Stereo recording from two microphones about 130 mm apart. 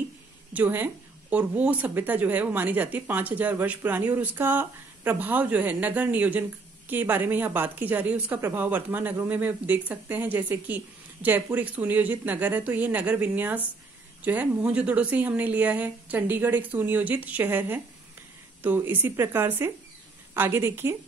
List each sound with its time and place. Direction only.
0.5 s a woman's voice: 15° right (ahead or behind)